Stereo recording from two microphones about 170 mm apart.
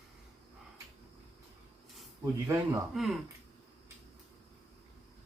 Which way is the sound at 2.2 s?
15° right (ahead or behind).